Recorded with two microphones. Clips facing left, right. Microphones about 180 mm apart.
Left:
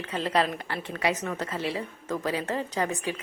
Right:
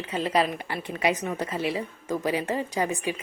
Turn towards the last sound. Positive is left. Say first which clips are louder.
# right 2 dB
turn(degrees=-10)  # may be behind; listen again after turning